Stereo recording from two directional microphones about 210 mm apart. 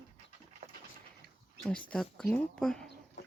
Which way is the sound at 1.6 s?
5° left (ahead or behind).